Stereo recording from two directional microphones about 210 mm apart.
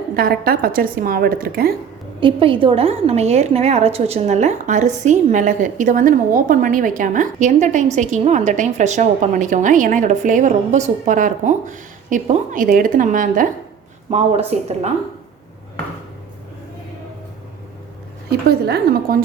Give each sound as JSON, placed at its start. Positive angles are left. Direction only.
{"t": 0.1, "sound": "a woman's voice", "side_deg": -45}
{"t": 2.2, "sound": "a woman's voice", "side_deg": -25}
{"t": 18.3, "sound": "a woman's voice", "side_deg": -50}